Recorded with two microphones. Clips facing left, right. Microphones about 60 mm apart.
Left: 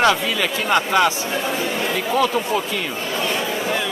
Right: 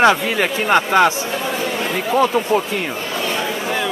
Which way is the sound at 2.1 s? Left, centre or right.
Right.